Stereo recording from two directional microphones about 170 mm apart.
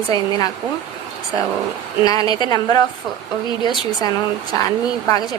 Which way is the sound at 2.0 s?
20° left (ahead or behind).